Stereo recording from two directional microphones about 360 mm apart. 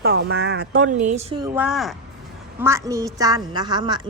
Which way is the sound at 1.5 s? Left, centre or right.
Centre.